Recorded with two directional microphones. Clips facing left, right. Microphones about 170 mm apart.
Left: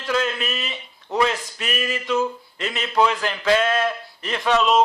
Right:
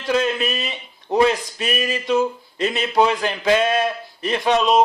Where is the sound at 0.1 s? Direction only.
20° right (ahead or behind).